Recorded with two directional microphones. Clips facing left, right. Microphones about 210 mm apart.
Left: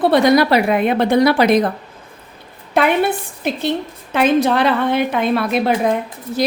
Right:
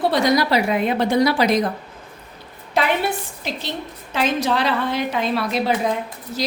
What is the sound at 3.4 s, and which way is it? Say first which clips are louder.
A woman's voice: left 9 dB; 55° left (ahead or behind).